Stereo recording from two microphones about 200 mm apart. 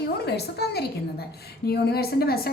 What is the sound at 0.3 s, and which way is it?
A woman's voice, 55° left (ahead or behind).